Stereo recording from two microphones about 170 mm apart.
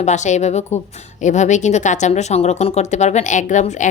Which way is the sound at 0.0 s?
45° left (ahead or behind).